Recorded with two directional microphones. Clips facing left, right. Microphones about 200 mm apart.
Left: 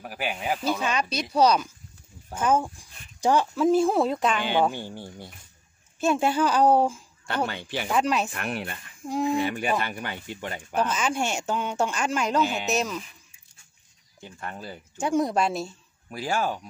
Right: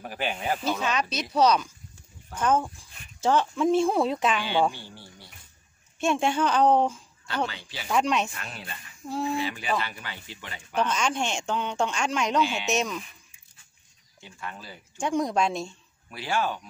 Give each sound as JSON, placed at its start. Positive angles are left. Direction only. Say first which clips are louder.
{"t": 0.0, "sound": "speech", "louder": "even", "side_deg": 5}
{"t": 4.7, "sound": "speech", "louder": "left 9 dB", "side_deg": 50}
{"t": 5.9, "sound": "speech", "louder": "left 2 dB", "side_deg": 5}
{"t": 7.2, "sound": "speech", "louder": "left 2 dB", "side_deg": 60}
{"t": 7.9, "sound": "speech", "louder": "even", "side_deg": 5}
{"t": 8.3, "sound": "speech", "louder": "left 9 dB", "side_deg": 60}
{"t": 9.0, "sound": "speech", "louder": "left 4 dB", "side_deg": 15}
{"t": 9.4, "sound": "speech", "louder": "left 3 dB", "side_deg": 55}
{"t": 10.8, "sound": "speech", "louder": "left 1 dB", "side_deg": 5}
{"t": 12.4, "sound": "speech", "louder": "left 1 dB", "side_deg": 45}
{"t": 12.6, "sound": "speech", "louder": "left 1 dB", "side_deg": 0}
{"t": 14.2, "sound": "speech", "louder": "left 3 dB", "side_deg": 45}
{"t": 15.0, "sound": "speech", "louder": "left 2 dB", "side_deg": 5}
{"t": 16.1, "sound": "speech", "louder": "left 1 dB", "side_deg": 45}